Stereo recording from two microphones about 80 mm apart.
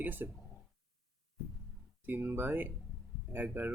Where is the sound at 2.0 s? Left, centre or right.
Right.